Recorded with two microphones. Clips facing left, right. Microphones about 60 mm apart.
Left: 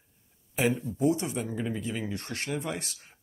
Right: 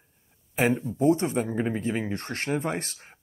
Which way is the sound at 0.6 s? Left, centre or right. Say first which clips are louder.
Right 3 dB; right.